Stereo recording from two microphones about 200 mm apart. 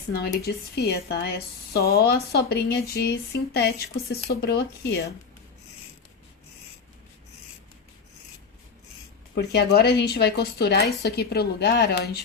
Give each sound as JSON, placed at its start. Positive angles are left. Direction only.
{"t": 0.1, "sound": "speech", "side_deg": 55}
{"t": 9.3, "sound": "speech", "side_deg": 55}